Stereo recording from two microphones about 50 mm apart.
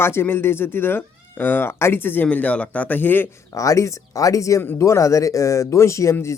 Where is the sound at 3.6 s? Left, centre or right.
Left.